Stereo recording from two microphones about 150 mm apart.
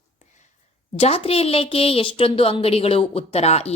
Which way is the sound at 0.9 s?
40° left (ahead or behind).